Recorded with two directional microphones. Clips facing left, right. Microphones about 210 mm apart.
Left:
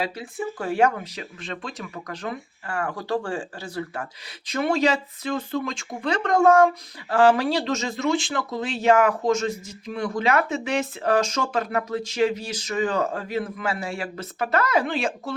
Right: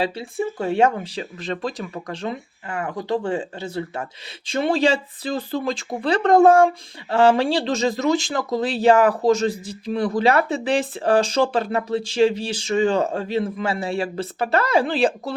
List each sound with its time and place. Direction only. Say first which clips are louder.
0.0 s speech: right 5 dB; 30° right (ahead or behind)